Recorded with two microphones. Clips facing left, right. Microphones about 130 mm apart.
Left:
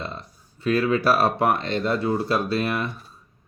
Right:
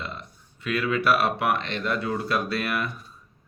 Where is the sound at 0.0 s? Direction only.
35° left (ahead or behind).